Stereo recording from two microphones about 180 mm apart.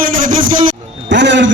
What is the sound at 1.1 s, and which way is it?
Speech, 80° right.